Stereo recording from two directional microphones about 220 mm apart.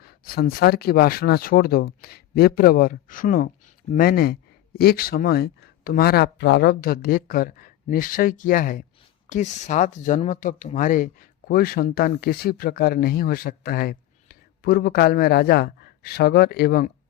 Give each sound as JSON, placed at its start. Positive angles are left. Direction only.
{"t": 0.0, "sound": "speech", "side_deg": 45}